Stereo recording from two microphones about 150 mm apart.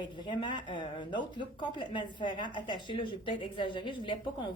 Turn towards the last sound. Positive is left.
turn(degrees=30)  # may be behind; listen again after turning